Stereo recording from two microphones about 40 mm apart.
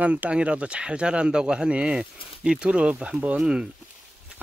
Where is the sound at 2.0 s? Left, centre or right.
Centre.